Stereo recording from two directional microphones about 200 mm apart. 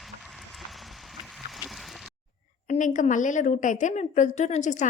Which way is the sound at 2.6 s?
35° left (ahead or behind).